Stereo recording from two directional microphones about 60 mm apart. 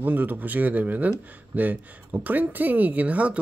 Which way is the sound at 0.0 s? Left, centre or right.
Right.